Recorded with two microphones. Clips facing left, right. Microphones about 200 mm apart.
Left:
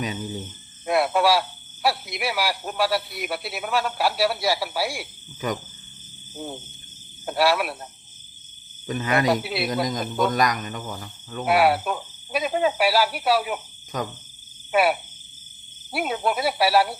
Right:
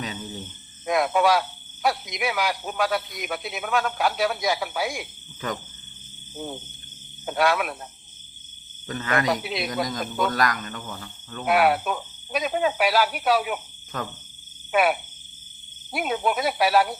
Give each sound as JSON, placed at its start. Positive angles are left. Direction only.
{"t": 0.9, "sound": "speech", "side_deg": 5}
{"t": 6.3, "sound": "cricket", "side_deg": 0}
{"t": 8.9, "sound": "speech", "side_deg": 20}
{"t": 9.4, "sound": "speech", "side_deg": 5}
{"t": 10.0, "sound": "cricket", "side_deg": 0}
{"t": 10.3, "sound": "speech", "side_deg": 20}
{"t": 11.3, "sound": "cricket", "side_deg": 5}
{"t": 13.9, "sound": "speech", "side_deg": 15}
{"t": 14.7, "sound": "frog", "side_deg": 5}
{"t": 15.9, "sound": "cricket", "side_deg": 5}